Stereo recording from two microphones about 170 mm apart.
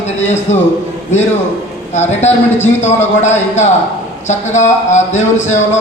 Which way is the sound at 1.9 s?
40° left (ahead or behind).